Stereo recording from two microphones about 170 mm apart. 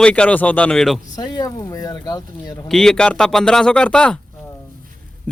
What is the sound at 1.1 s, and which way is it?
Speech, 20° left (ahead or behind).